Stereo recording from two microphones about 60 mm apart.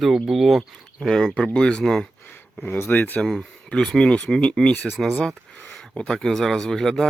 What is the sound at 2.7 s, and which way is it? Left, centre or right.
Speech, left.